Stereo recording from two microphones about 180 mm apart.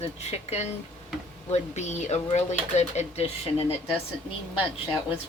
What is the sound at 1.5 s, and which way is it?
Speech, 40° left (ahead or behind).